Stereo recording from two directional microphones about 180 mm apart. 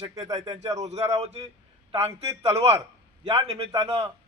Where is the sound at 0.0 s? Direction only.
20° right (ahead or behind).